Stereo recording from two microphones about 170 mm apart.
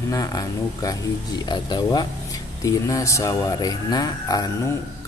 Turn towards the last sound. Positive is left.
turn(degrees=25)  # may be behind; listen again after turning